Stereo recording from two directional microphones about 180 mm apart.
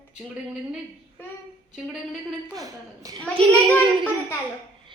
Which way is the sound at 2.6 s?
20° right (ahead or behind).